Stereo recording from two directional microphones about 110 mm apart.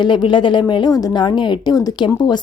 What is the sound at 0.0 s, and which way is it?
A woman's voice, 45° left (ahead or behind).